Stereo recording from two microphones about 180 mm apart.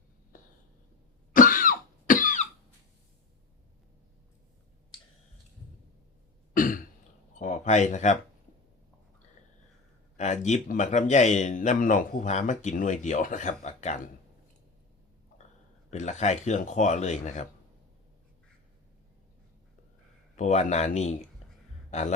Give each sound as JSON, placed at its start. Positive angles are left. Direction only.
{"t": 0.3, "sound": "a sound", "side_deg": 50}
{"t": 1.3, "sound": "cough", "side_deg": 50}
{"t": 6.5, "sound": "throat clearing", "side_deg": 50}
{"t": 7.3, "sound": "speech", "side_deg": 45}
{"t": 10.2, "sound": "a man's voice", "side_deg": 40}
{"t": 15.9, "sound": "speech", "side_deg": 40}
{"t": 20.3, "sound": "speech", "side_deg": 40}
{"t": 21.8, "sound": "a sound", "side_deg": 40}